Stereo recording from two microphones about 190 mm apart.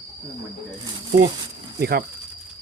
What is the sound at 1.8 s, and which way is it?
Speech, 55° right (ahead or behind).